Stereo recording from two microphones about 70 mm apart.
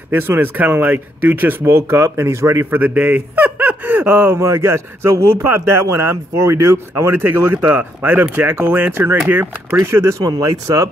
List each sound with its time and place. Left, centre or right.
0.3 s a man's voice: right
4.1 s a man's voice: right
7.5 s a man's voice: right
10.4 s speech: right